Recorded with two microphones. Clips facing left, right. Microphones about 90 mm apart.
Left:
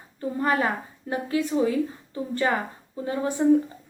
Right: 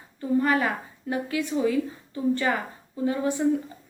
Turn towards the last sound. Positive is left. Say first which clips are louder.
# right 1 dB
turn(degrees=35)  # may be behind; listen again after turning